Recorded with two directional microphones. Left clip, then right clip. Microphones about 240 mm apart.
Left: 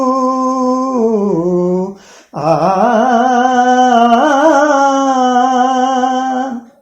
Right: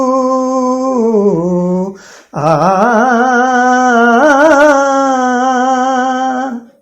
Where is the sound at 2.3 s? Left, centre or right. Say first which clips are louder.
Right 2 dB; right.